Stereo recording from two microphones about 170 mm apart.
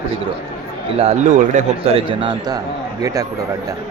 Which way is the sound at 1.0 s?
40° right (ahead or behind).